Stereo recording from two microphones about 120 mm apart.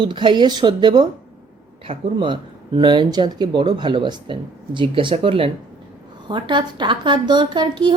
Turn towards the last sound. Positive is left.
turn(degrees=-40)  # may be behind; listen again after turning